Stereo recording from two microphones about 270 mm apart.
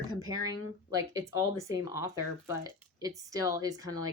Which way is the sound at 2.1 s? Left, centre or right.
Left.